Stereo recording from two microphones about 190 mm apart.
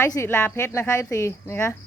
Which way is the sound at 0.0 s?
15° left (ahead or behind).